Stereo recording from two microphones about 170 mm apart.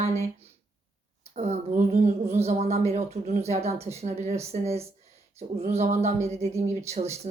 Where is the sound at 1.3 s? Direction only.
40° right (ahead or behind).